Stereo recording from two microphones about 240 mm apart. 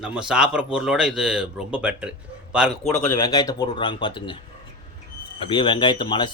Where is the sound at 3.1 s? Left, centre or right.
Centre.